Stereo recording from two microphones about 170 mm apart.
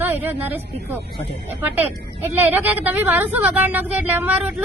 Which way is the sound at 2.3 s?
10° right (ahead or behind).